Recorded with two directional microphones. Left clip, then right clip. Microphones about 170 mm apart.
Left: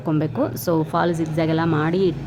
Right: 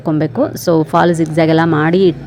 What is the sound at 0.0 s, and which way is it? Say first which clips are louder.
A woman's voice: right 7 dB; 25° right (ahead or behind).